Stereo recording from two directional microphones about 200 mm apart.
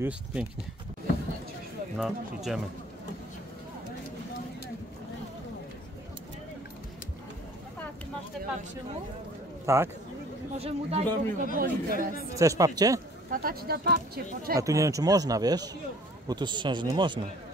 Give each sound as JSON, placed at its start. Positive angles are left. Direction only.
{"t": 0.0, "sound": "speech", "side_deg": -5}
{"t": 2.0, "sound": "speech", "side_deg": 0}
{"t": 9.7, "sound": "a man's voice", "side_deg": -15}
{"t": 10.6, "sound": "speech", "side_deg": -30}
{"t": 12.4, "sound": "a man's voice", "side_deg": -15}
{"t": 13.3, "sound": "speech", "side_deg": -45}
{"t": 14.6, "sound": "a man's voice", "side_deg": -15}